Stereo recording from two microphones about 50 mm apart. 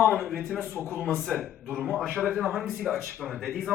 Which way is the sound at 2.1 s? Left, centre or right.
Right.